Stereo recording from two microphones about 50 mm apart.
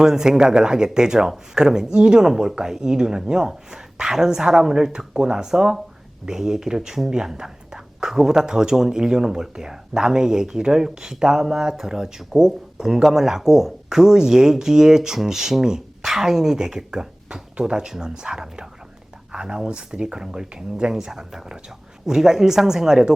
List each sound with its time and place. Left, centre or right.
0.0 s speech: centre